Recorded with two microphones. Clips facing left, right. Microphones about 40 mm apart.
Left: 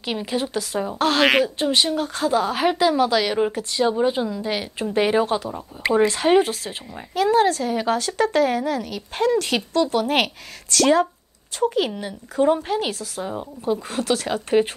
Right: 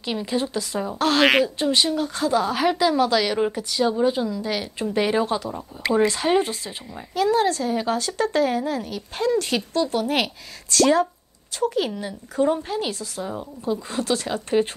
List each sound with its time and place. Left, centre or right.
0.0 s a woman's voice: left
3.3 s speech: centre
3.7 s a woman's voice: centre
5.5 s speech: centre
6.0 s speech: left